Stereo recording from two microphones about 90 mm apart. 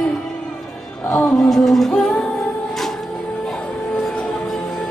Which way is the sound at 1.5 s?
5° left (ahead or behind).